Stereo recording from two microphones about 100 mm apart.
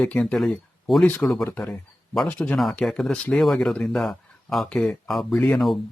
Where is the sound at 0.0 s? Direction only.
10° left (ahead or behind).